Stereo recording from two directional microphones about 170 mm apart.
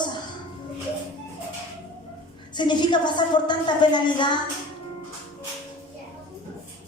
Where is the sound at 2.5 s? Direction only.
25° left (ahead or behind).